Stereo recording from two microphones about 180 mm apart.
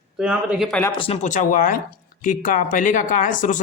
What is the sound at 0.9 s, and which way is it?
Speech, 30° left (ahead or behind).